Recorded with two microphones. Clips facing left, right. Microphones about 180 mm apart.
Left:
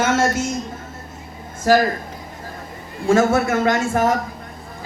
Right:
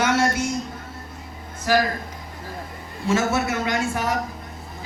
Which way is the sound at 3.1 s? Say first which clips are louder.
Left 6 dB; 50° left (ahead or behind).